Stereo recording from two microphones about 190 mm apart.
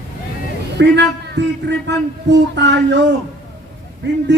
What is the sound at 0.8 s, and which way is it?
Speech, 65° right (ahead or behind).